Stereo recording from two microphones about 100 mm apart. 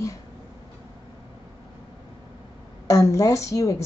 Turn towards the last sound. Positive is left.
turn(degrees=30)  # may be behind; listen again after turning